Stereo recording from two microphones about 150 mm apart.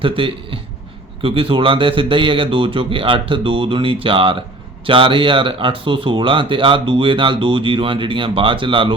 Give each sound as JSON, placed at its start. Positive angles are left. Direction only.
{"t": 0.0, "sound": "speech", "side_deg": -35}